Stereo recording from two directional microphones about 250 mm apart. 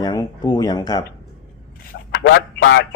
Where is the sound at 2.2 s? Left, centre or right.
Left.